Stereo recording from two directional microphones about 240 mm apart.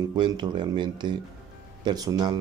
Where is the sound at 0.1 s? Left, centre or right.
Centre.